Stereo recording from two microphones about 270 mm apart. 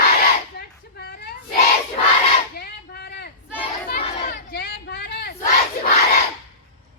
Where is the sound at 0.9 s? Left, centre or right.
Left.